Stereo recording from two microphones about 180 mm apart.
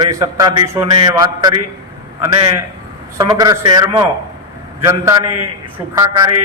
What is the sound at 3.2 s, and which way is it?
A man's voice, 20° right (ahead or behind).